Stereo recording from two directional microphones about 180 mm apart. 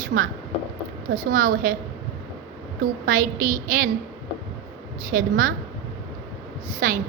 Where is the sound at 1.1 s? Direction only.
50° right (ahead or behind).